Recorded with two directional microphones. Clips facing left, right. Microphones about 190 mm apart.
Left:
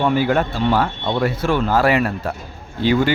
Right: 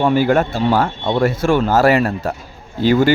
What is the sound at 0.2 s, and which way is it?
A man's voice, 50° right (ahead or behind).